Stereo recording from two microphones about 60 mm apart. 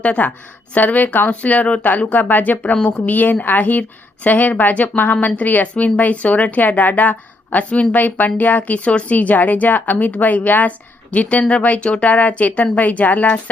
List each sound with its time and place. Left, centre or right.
0.0 s speech: left